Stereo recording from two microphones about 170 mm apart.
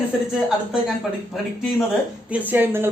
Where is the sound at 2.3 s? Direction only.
10° right (ahead or behind).